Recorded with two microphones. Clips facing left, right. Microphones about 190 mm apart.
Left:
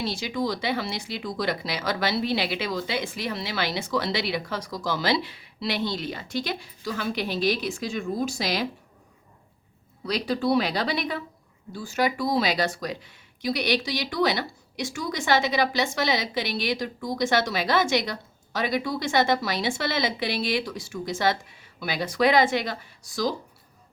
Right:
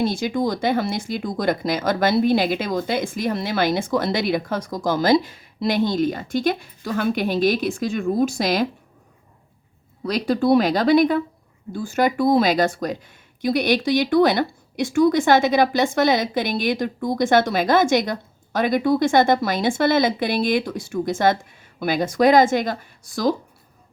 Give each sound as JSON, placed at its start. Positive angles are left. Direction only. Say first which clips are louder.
{"t": 0.0, "sound": "speech", "louder": "right 7 dB", "side_deg": -50}
{"t": 10.0, "sound": "speech", "louder": "right 6 dB", "side_deg": -50}